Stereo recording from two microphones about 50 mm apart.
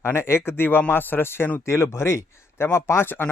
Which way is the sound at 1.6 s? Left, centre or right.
Left.